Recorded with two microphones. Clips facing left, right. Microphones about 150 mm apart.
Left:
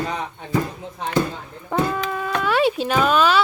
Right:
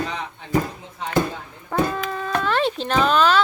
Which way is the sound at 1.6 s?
10° left (ahead or behind).